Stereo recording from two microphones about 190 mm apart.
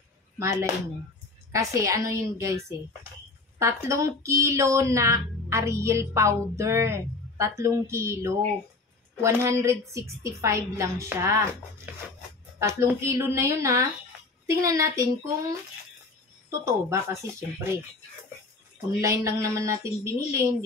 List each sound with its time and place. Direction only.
0.4 s speech: 15° right (ahead or behind)
18.9 s speech: 15° right (ahead or behind)